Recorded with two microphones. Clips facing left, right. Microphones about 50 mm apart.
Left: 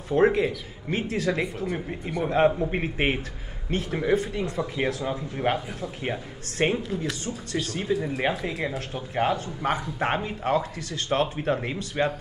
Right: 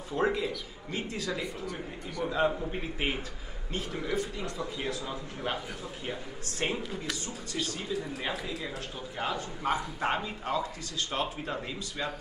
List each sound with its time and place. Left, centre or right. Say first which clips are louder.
0.1 s speech: left 8 dB; left
1.7 s speech: left 8 dB; left
2.2 s speech: left 7 dB; left
6.6 s speech: left 8 dB; left